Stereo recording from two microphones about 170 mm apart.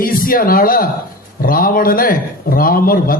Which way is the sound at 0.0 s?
55° left (ahead or behind).